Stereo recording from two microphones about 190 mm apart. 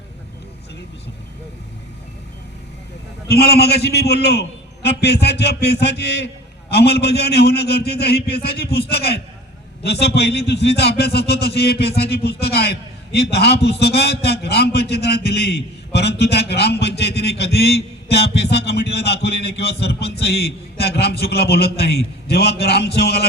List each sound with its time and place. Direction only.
3.2 s a man's voice: 55° left (ahead or behind)